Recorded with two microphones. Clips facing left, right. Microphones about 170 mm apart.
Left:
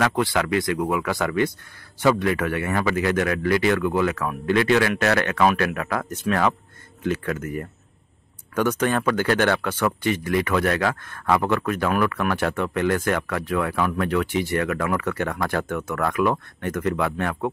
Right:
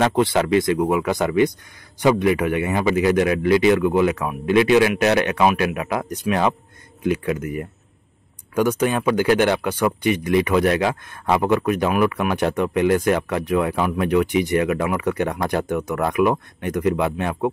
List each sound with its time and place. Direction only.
0.0 s speech: 25° right (ahead or behind)